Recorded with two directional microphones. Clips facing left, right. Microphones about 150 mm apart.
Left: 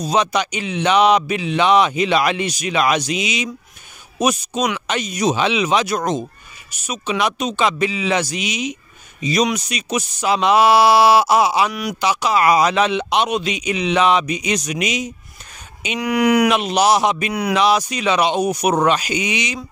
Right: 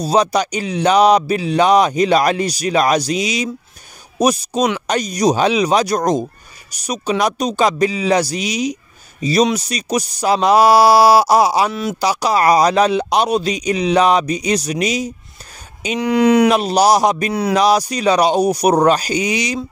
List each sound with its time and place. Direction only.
0.0 s speech: 35° right (ahead or behind)
16.0 s speech: 25° right (ahead or behind)
16.4 s speech: 35° right (ahead or behind)
17.3 s speech: 25° right (ahead or behind)
17.6 s speech: 35° right (ahead or behind)